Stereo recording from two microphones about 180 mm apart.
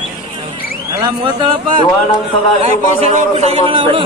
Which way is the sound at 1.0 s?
25° right (ahead or behind).